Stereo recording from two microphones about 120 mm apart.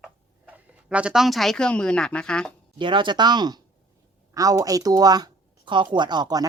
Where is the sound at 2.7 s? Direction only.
40° right (ahead or behind).